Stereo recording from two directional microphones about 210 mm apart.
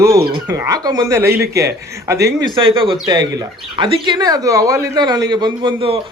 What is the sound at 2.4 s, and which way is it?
Speech, 25° right (ahead or behind).